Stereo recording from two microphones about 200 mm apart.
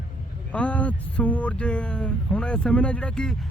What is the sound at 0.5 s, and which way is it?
Speech, 5° left (ahead or behind).